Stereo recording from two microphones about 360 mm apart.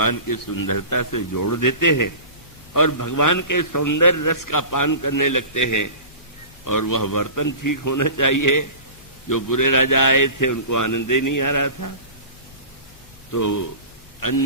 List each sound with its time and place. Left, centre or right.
0.0 s a man's voice: left
13.3 s a man's voice: left